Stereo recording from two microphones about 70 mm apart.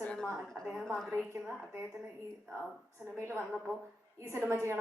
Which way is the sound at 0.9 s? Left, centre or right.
Centre.